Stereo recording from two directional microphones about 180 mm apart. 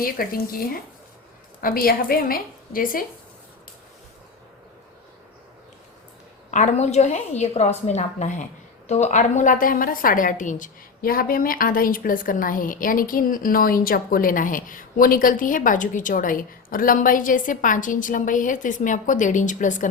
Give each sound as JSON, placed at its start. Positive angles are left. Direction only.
{"t": 0.0, "sound": "a woman's voice", "side_deg": 55}
{"t": 6.5, "sound": "a woman's voice", "side_deg": 40}